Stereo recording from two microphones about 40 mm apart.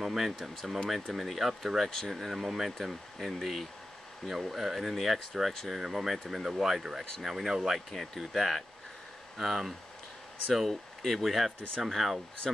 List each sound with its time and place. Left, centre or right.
0.0 s speech: centre
1.9 s speech: centre
2.1 s speech: centre
10.7 s speech: centre
11.2 s speech: centre